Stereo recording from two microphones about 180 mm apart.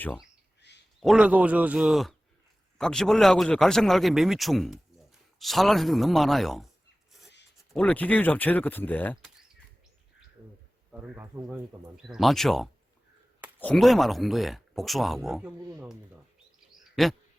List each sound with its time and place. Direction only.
0.6 s a sound: 75° left (ahead or behind)
1.0 s a man's voice: 5° right (ahead or behind)
7.7 s speech: 10° left (ahead or behind)
10.9 s a man's voice: 5° right (ahead or behind)
16.9 s speech: centre (ahead or behind)